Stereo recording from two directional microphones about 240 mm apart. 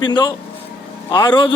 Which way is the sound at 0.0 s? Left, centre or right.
Centre.